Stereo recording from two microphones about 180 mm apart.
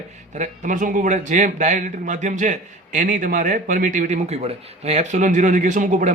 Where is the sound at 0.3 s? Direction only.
45° right (ahead or behind).